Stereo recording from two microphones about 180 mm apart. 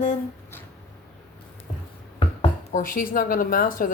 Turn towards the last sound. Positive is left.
turn(degrees=50)  # may be behind; listen again after turning